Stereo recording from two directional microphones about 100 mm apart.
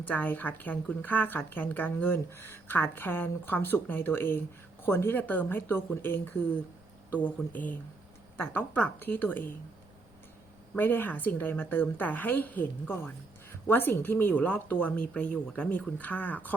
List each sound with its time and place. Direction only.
0.0 s a woman's voice: 15° left (ahead or behind)
10.8 s a woman's voice: 20° left (ahead or behind)